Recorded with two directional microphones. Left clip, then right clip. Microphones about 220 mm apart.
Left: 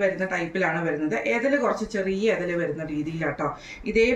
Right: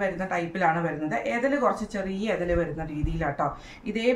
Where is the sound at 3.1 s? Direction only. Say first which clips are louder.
Right 2 dB; 25° right (ahead or behind).